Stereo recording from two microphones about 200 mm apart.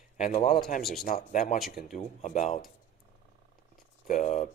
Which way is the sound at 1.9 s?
40° left (ahead or behind).